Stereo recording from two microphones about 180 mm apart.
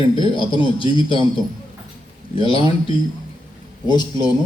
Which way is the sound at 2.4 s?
30° left (ahead or behind).